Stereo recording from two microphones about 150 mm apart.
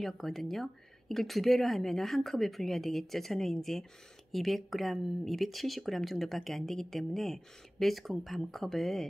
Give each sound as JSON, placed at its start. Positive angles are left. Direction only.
{"t": 0.0, "sound": "speech", "side_deg": 0}